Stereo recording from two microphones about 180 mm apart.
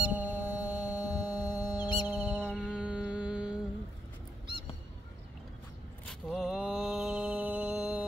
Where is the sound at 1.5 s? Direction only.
10° right (ahead or behind).